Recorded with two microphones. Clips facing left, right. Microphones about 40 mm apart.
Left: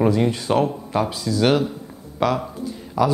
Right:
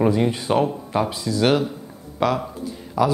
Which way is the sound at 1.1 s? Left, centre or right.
Right.